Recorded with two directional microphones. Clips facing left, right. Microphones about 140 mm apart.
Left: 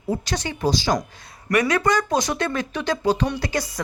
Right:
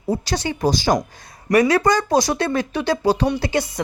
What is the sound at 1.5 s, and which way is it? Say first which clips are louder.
Speech: right 4 dB; 35° right (ahead or behind).